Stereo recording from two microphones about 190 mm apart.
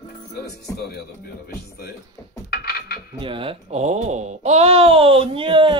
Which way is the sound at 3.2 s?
25° right (ahead or behind).